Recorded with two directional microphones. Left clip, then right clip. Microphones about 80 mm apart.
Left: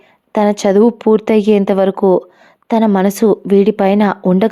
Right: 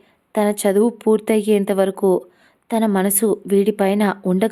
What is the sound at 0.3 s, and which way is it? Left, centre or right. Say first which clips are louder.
A woman's voice: left 6 dB; left.